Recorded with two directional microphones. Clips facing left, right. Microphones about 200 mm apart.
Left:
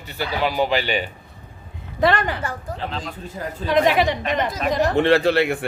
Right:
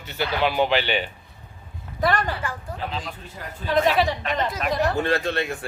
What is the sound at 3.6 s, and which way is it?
Speech, 15° left (ahead or behind).